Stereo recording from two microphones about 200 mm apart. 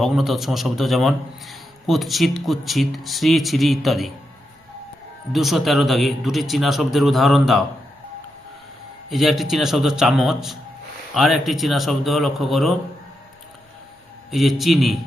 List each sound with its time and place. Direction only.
0.0 s a man's voice: centre (ahead or behind)
5.3 s a man's voice: centre (ahead or behind)
9.0 s a man's voice: centre (ahead or behind)
14.3 s a man's voice: centre (ahead or behind)